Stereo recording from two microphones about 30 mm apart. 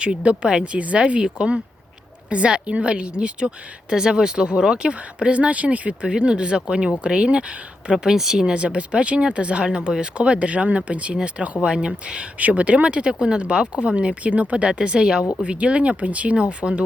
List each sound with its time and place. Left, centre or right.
0.0 s speech: right
0.6 s speech: right
6.1 s speech: right
8.0 s speech: centre
8.5 s speech: right
11.1 s speech: right
12.4 s speech: right
15.4 s speech: right